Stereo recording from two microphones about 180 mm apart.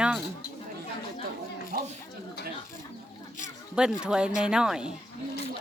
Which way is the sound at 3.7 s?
5° right (ahead or behind).